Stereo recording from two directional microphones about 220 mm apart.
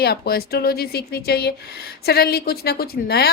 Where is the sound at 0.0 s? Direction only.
45° left (ahead or behind).